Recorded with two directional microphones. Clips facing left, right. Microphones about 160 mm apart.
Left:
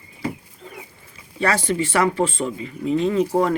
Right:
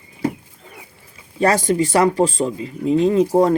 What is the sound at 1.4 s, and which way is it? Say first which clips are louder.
Speech: right 5 dB; 45° right (ahead or behind).